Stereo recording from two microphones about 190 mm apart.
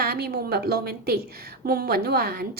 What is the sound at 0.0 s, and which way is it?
A woman's voice, 55° right (ahead or behind).